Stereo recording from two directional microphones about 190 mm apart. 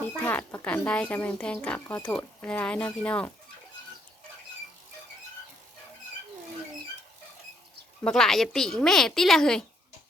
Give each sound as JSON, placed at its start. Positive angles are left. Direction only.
{"t": 0.3, "sound": "speech", "side_deg": 10}
{"t": 8.0, "sound": "speech", "side_deg": 0}